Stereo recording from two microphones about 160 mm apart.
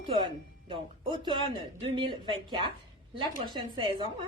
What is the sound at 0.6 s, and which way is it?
A woman's voice, 30° right (ahead or behind).